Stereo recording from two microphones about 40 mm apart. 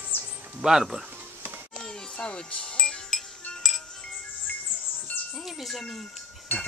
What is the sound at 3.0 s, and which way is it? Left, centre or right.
Music, centre.